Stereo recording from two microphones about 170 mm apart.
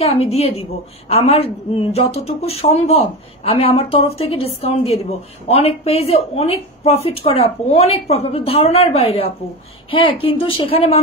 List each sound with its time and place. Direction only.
0.0 s a woman's voice: 35° left (ahead or behind)